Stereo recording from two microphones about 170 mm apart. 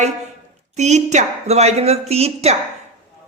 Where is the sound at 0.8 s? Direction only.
45° right (ahead or behind).